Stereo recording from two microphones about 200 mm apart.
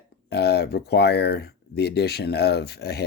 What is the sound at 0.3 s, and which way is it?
Speech, 55° left (ahead or behind).